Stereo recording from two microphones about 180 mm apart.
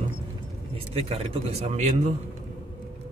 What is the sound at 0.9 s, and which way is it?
Speech, 35° right (ahead or behind).